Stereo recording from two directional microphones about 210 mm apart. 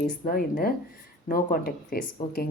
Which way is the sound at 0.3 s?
45° left (ahead or behind).